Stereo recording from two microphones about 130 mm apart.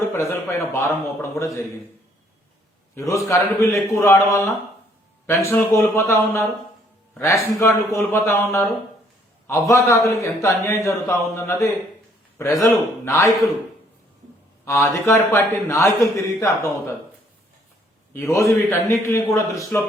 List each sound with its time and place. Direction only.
0.1 s a man's voice: 20° left (ahead or behind)
2.9 s a man's voice: 25° left (ahead or behind)
7.6 s a man's voice: 20° left (ahead or behind)
14.6 s a man's voice: 20° left (ahead or behind)
18.1 s a man's voice: 20° left (ahead or behind)